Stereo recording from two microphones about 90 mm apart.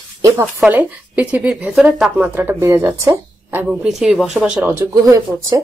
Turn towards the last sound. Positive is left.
turn(degrees=-40)  # may be behind; listen again after turning